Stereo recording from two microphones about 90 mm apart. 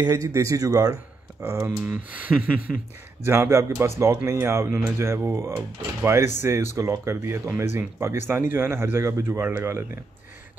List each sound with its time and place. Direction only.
0.0 s speech: 35° right (ahead or behind)
1.8 s speech: 20° right (ahead or behind)
3.3 s speech: 30° right (ahead or behind)